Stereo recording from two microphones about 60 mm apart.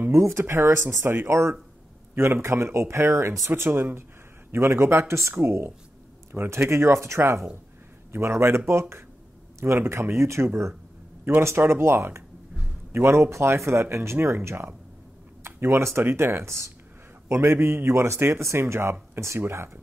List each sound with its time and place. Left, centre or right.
0.1 s speech: right
5.3 s speech: right
11.2 s speech: right